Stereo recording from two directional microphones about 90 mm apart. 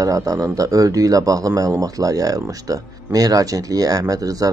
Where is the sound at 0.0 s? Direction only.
40° right (ahead or behind).